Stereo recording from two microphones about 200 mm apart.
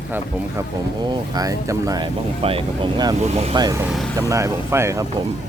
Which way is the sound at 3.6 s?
15° right (ahead or behind).